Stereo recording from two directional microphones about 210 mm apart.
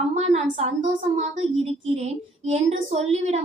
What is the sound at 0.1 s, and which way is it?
Speech, 30° right (ahead or behind).